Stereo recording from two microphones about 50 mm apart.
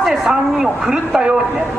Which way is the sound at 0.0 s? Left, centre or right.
Centre.